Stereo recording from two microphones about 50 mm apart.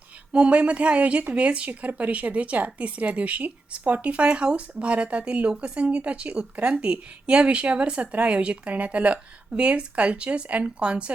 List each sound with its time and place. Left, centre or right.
0.3 s a woman's voice: right